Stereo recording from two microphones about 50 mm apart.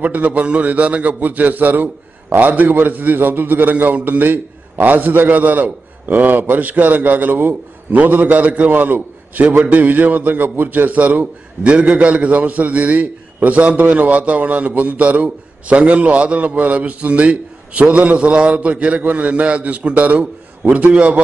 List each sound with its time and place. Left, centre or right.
0.0 s a man's voice: right